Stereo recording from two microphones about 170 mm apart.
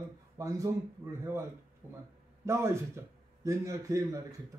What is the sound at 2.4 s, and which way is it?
A man's voice, 15° right (ahead or behind).